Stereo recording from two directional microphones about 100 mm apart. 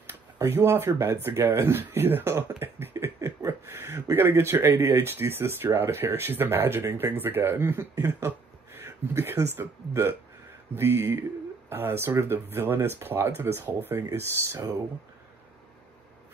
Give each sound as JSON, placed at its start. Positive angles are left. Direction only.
{"t": 0.0, "sound": "speech", "side_deg": -25}
{"t": 8.7, "sound": "a sound", "side_deg": -25}
{"t": 9.6, "sound": "speech", "side_deg": -20}